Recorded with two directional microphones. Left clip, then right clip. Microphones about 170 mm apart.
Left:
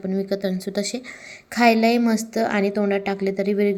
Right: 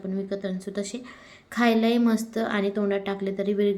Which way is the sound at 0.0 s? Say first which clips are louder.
Left 6 dB; 35° left (ahead or behind).